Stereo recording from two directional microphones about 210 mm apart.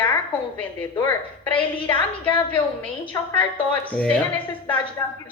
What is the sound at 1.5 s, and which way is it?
Speech, 25° left (ahead or behind).